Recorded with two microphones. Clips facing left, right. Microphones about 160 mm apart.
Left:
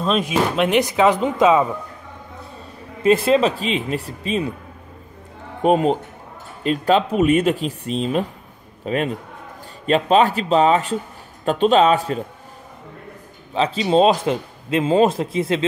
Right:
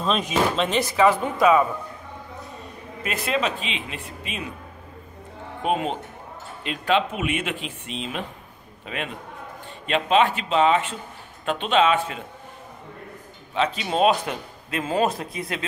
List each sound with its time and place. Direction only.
0.0 s speech: 5° left (ahead or behind); by 1.7 s 25° left (ahead or behind)
3.0 s speech: 30° left (ahead or behind)
5.6 s speech: 40° left (ahead or behind)
13.6 s a man's voice: 30° left (ahead or behind)